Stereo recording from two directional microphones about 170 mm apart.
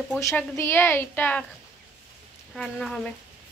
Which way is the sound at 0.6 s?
15° left (ahead or behind).